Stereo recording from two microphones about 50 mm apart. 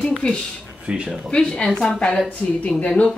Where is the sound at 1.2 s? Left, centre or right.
Centre.